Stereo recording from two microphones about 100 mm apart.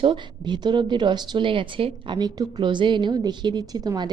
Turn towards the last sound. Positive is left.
turn(degrees=-40)  # may be behind; listen again after turning